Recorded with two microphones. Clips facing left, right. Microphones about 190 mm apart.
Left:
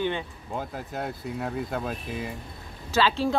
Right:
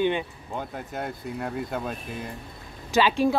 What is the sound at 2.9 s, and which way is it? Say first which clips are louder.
Speech: right 2 dB; 15° right (ahead or behind).